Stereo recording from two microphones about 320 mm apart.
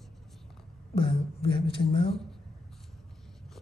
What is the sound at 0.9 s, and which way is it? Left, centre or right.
Speech, centre.